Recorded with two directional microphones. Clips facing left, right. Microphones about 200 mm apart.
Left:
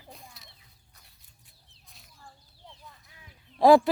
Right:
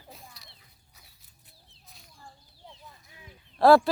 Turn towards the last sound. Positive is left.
turn(degrees=15)  # may be behind; listen again after turning